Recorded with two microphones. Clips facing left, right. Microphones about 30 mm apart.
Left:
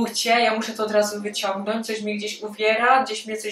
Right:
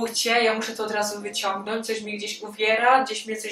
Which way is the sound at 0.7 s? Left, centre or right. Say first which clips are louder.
Left 5 dB; centre.